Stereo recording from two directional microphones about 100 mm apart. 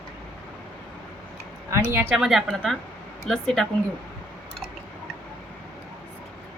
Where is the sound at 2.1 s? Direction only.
5° right (ahead or behind).